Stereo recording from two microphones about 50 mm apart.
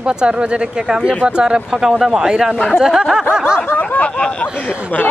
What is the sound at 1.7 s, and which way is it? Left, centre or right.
Speech, centre.